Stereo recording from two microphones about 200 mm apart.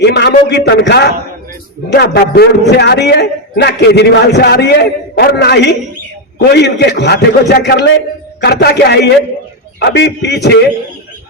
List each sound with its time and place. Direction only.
0.0 s a man's voice: 55° left (ahead or behind)